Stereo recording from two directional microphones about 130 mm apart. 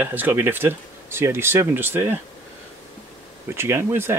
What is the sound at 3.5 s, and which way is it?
Speech, 20° right (ahead or behind).